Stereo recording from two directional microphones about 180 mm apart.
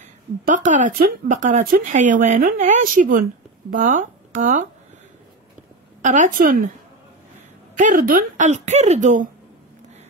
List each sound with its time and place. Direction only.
0.5 s speech: 45° right (ahead or behind)
6.0 s speech: 45° right (ahead or behind)
7.7 s speech: 50° right (ahead or behind)